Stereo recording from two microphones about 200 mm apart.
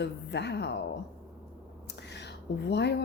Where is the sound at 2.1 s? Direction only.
55° left (ahead or behind).